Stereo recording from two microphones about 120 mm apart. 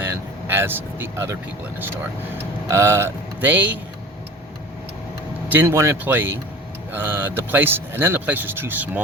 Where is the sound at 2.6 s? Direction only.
25° right (ahead or behind).